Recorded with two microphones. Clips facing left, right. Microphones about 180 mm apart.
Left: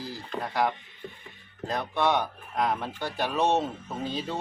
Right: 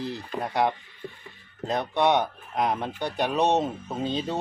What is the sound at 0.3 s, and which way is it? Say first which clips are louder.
Speech: right 2 dB; 25° right (ahead or behind).